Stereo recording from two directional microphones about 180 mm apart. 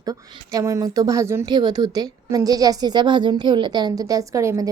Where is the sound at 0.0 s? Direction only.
20° right (ahead or behind).